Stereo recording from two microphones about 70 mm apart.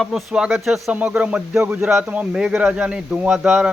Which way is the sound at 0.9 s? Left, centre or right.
Centre.